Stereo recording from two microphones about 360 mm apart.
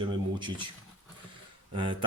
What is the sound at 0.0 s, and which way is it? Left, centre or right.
Speech, centre.